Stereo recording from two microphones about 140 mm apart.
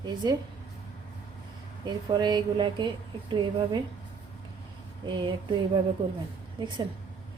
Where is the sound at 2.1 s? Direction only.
30° right (ahead or behind).